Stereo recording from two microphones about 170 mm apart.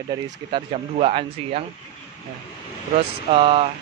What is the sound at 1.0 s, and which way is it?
Speech, 40° right (ahead or behind).